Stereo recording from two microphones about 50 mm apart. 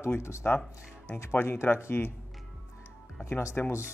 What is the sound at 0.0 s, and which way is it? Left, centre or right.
Speech, left.